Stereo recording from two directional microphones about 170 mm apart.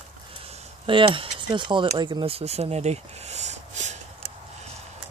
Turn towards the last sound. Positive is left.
turn(degrees=-45)  # may be behind; listen again after turning